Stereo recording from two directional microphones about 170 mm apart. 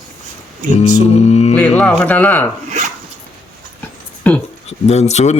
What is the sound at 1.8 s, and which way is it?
Speech, 5° left (ahead or behind).